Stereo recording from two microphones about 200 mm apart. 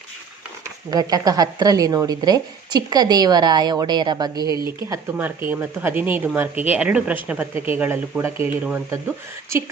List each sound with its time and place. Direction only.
0.9 s speech: 20° right (ahead or behind)